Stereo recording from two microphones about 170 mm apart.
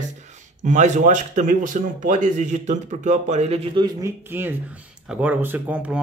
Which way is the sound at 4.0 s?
10° right (ahead or behind).